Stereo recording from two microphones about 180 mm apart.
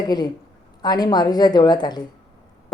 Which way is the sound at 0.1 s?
25° left (ahead or behind).